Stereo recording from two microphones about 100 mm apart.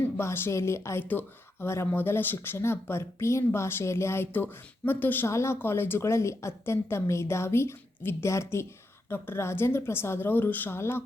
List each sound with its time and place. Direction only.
0.2 s speech: 25° left (ahead or behind)